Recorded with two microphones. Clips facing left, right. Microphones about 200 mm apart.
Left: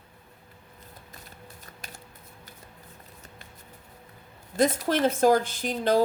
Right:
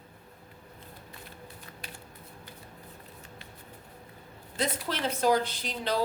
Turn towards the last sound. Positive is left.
turn(degrees=50)  # may be behind; listen again after turning